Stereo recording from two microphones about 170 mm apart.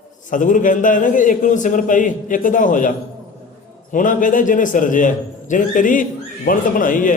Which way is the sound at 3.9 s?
50° left (ahead or behind).